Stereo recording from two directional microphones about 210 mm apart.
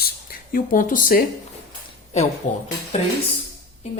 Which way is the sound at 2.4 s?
35° left (ahead or behind).